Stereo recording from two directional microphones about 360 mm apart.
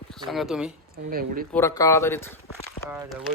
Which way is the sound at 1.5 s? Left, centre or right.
Centre.